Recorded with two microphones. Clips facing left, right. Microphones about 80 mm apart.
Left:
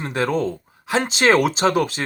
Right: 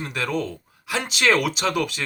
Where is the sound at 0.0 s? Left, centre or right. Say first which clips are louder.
Left 5 dB; left.